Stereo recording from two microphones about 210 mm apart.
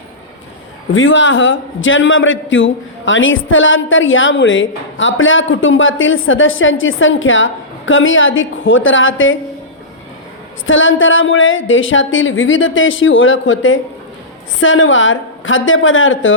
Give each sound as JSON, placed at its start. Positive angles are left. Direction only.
{"t": 0.9, "sound": "a man's voice", "side_deg": 65}
{"t": 10.7, "sound": "a man's voice", "side_deg": 70}